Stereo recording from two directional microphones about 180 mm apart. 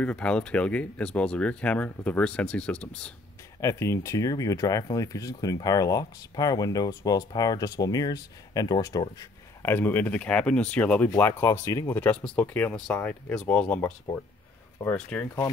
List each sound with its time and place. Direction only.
0.0 s speech: 5° left (ahead or behind)
3.6 s speech: 15° left (ahead or behind)